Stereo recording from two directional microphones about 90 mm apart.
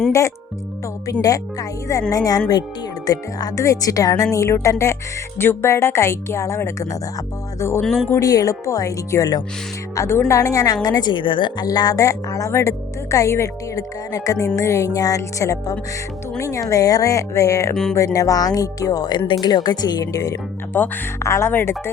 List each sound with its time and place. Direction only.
0.1 s a woman's voice: 35° left (ahead or behind)
7.8 s speech: 5° left (ahead or behind)
8.2 s a woman's voice: 40° left (ahead or behind)
11.1 s a woman's voice: 65° left (ahead or behind); by 20.4 s 40° left (ahead or behind)
20.7 s speech: 20° left (ahead or behind)
21.2 s speech: 30° left (ahead or behind)